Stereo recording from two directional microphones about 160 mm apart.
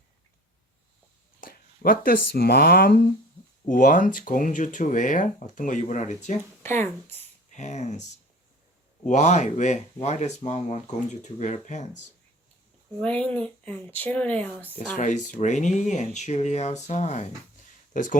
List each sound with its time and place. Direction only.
1.4 s speech: 65° left (ahead or behind)
3.7 s speech: 55° left (ahead or behind)
6.6 s speech: 15° left (ahead or behind)
7.5 s speech: 45° left (ahead or behind)
9.0 s speech: 50° left (ahead or behind)
13.0 s speech: 10° left (ahead or behind)
14.9 s speech: 50° left (ahead or behind)